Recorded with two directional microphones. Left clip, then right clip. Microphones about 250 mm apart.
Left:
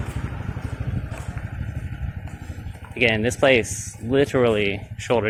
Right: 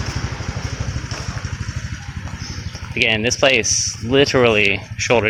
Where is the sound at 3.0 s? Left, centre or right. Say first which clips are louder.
Right 3 dB; centre.